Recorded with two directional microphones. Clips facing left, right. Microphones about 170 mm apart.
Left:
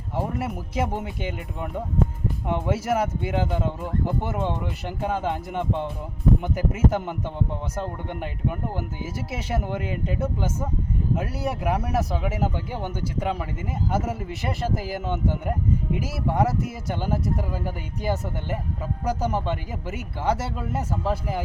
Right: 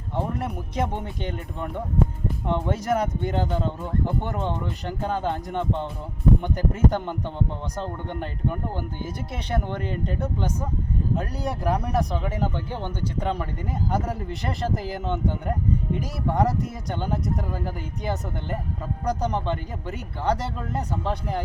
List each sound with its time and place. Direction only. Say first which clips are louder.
0.2 s speech: even; 5° left (ahead or behind)